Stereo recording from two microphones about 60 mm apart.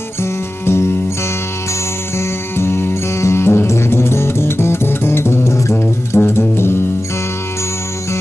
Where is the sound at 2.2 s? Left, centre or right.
Left.